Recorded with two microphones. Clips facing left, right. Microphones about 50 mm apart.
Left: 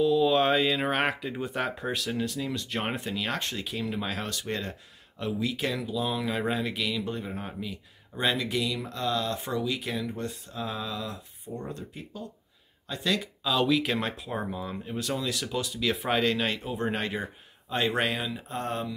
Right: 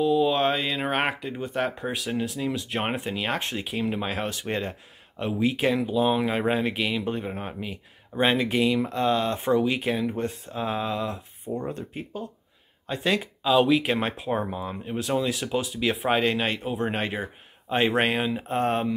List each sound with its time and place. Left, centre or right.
0.0 s a sound: centre
0.4 s speech: centre; by 13.5 s right
13.5 s speech: centre
13.9 s speech: right
14.5 s speech: right
16.6 s speech: centre
17.9 s speech: right
18.6 s speech: right